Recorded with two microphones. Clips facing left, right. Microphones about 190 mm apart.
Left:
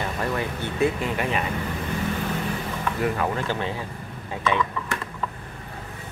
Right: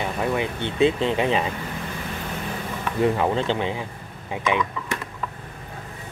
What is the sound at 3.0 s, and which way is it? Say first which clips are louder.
Speech: right 5 dB; 25° right (ahead or behind).